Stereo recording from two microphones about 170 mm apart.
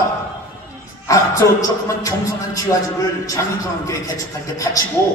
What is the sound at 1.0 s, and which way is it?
A man's voice, 20° left (ahead or behind).